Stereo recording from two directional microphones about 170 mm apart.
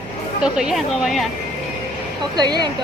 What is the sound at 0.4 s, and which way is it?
Speech, 5° right (ahead or behind).